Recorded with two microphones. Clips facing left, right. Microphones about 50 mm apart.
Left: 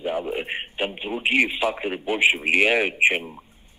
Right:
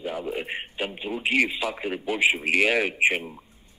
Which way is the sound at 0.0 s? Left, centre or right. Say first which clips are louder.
Left 4 dB; left.